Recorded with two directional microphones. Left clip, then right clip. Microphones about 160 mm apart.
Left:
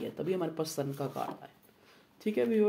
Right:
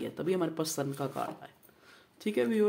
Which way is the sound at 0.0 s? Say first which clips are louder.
Right 2 dB; 25° right (ahead or behind).